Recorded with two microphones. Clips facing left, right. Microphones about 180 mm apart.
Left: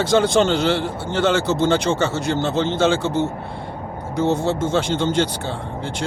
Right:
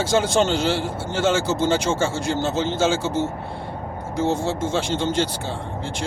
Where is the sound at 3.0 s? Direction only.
65° left (ahead or behind).